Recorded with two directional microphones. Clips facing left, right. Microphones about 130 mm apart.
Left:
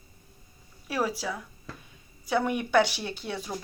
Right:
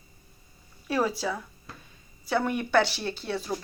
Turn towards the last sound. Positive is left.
turn(degrees=15)  # may be behind; listen again after turning